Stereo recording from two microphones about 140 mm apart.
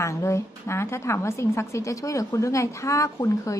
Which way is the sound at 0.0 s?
20° left (ahead or behind).